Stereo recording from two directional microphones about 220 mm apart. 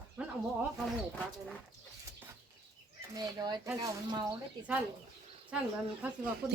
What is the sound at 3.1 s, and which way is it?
Speech, 20° right (ahead or behind).